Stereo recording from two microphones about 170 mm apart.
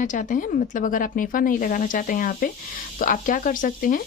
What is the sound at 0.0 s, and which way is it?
Speech, 50° left (ahead or behind).